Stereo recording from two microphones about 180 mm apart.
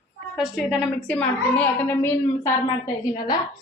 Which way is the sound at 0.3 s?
Centre (ahead or behind).